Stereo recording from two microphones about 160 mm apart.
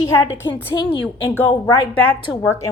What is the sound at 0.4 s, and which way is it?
Speech, 30° left (ahead or behind).